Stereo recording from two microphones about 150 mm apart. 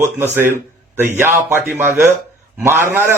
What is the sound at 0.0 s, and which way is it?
Speech, 15° right (ahead or behind).